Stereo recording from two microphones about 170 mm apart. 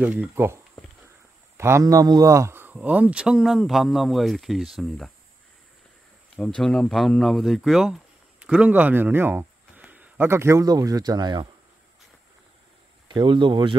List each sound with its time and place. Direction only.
0.0 s speech: 10° right (ahead or behind)
1.6 s speech: 15° right (ahead or behind); by 5.1 s centre (ahead or behind)
6.3 s speech: 5° left (ahead or behind); by 11.4 s 25° right (ahead or behind)
13.1 s speech: 30° right (ahead or behind)